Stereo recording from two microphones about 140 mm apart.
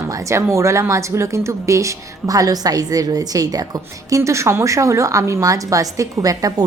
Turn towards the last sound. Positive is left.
turn(degrees=-25)  # may be behind; listen again after turning